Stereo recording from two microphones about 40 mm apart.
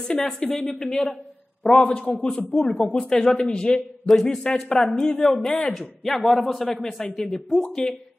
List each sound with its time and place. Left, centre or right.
0.1 s speech: centre
1.6 s a man's voice: left
1.9 s a man's voice: left
2.2 s speech: centre
4.1 s speech: centre
4.6 s speech: centre
7.8 s speech: centre